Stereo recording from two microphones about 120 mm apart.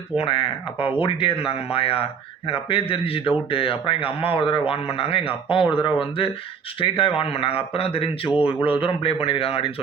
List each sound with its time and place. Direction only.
0.2 s speech: 50° left (ahead or behind)